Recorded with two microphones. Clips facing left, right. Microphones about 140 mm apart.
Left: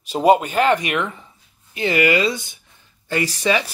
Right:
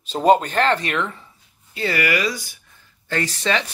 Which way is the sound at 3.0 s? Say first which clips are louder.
Left 3 dB; 10° left (ahead or behind).